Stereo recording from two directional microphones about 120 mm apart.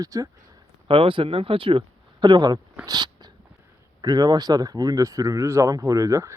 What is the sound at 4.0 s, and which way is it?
Speech, 35° right (ahead or behind).